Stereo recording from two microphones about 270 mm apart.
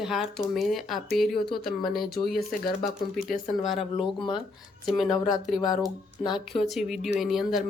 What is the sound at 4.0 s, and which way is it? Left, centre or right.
Speech, centre.